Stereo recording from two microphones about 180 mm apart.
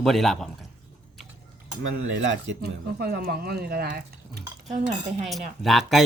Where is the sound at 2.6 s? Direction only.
60° right (ahead or behind).